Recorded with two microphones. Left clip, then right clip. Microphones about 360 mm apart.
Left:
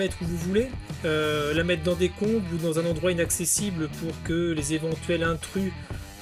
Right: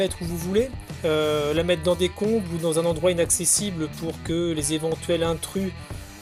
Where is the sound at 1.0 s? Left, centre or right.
Centre.